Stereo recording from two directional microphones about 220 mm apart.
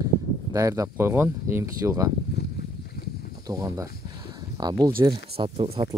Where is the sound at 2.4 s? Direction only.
50° left (ahead or behind).